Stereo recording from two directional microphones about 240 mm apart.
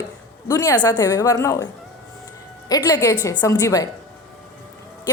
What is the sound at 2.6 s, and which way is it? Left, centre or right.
A woman's voice, centre.